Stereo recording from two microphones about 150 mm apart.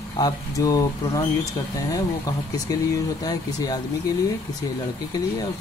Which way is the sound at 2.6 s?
25° left (ahead or behind).